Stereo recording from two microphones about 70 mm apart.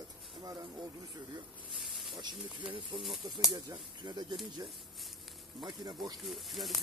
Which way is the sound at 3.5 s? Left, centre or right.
Right.